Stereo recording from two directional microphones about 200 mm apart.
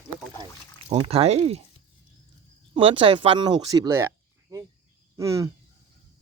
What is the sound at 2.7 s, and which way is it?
Speech, 25° right (ahead or behind).